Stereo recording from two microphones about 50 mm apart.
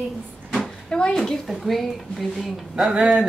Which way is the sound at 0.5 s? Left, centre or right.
Centre.